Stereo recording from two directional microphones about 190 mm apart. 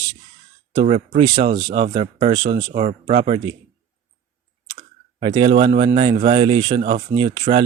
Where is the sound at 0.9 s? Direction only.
35° right (ahead or behind).